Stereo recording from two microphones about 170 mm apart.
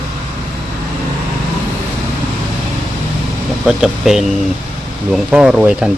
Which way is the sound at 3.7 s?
Centre (ahead or behind).